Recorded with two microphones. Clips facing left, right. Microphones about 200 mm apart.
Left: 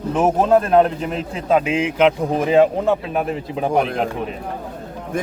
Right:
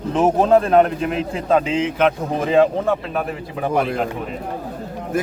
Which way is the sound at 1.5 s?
10° left (ahead or behind).